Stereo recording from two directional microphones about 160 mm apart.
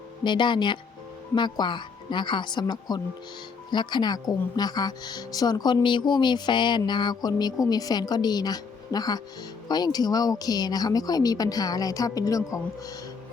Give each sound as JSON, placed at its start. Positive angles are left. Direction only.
{"t": 0.3, "sound": "a woman's voice", "side_deg": 30}